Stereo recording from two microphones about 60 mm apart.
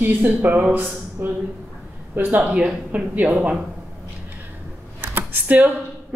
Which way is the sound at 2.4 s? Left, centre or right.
Right.